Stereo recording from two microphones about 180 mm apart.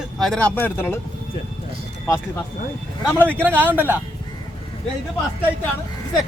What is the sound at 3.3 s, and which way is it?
Speech, 10° right (ahead or behind).